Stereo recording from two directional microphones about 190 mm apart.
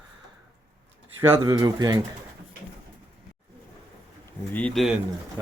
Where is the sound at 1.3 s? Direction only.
20° right (ahead or behind).